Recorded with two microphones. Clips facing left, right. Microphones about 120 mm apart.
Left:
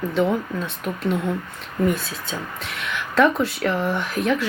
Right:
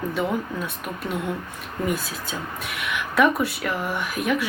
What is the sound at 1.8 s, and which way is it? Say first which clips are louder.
Speech: left 4 dB; 10° right (ahead or behind).